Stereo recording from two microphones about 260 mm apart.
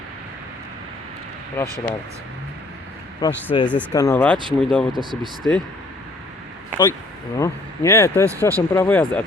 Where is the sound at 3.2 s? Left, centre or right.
Centre.